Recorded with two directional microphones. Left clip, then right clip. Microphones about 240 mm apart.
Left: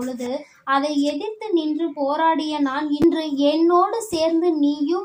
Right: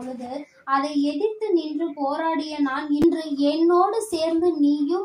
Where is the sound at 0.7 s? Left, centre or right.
Left.